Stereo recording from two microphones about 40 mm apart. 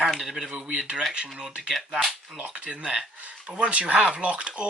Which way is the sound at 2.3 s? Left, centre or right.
Right.